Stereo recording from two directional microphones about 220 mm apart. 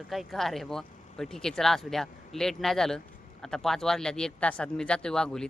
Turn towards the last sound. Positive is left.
turn(degrees=5)  # may be behind; listen again after turning